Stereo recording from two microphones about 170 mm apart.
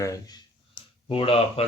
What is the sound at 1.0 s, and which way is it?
Speech, 35° left (ahead or behind).